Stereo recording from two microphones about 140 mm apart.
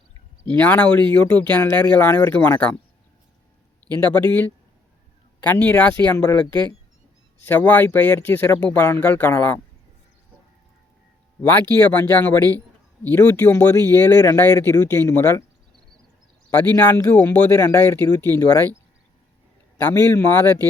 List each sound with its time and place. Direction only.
0.4 s speech: 10° left (ahead or behind)
3.9 s speech: 10° left (ahead or behind)
7.4 s speech: 10° left (ahead or behind)
11.8 s speech: 15° left (ahead or behind)
16.5 s speech: 15° left (ahead or behind)
19.8 s speech: 15° left (ahead or behind)